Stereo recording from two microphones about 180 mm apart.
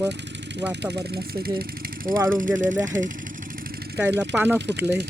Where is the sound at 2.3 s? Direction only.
45° right (ahead or behind).